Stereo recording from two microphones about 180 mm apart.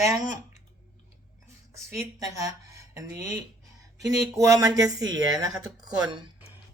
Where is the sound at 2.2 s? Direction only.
20° right (ahead or behind).